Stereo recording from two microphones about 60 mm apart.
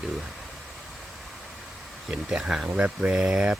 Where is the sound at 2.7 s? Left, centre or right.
Right.